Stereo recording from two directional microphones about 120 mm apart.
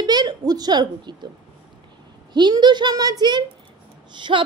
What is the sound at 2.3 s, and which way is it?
A woman's voice, 40° right (ahead or behind).